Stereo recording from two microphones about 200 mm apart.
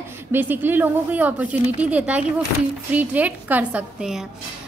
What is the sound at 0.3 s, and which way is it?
A woman's voice, 10° right (ahead or behind).